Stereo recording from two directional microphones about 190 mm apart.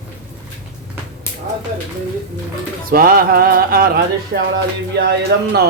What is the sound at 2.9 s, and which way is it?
Speech, 50° right (ahead or behind).